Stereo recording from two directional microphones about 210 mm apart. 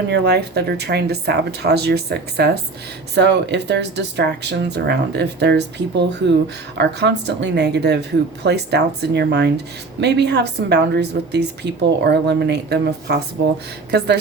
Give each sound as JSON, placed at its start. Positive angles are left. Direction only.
{"t": 0.1, "sound": "a woman's voice", "side_deg": -50}